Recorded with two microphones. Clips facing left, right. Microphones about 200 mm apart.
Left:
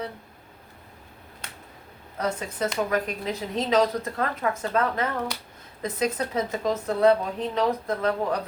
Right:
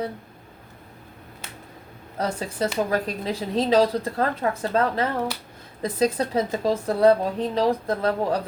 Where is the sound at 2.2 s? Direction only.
30° right (ahead or behind).